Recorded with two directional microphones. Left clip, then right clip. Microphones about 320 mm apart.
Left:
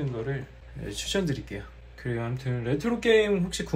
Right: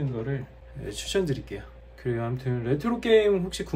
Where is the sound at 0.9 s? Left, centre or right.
Centre.